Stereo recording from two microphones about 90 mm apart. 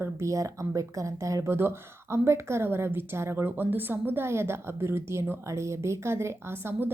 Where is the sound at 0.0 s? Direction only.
35° right (ahead or behind).